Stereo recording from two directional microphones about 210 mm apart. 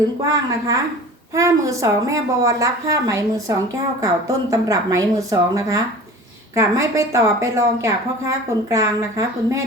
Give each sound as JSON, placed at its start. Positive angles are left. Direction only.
{"t": 0.3, "sound": "a woman's voice", "side_deg": -15}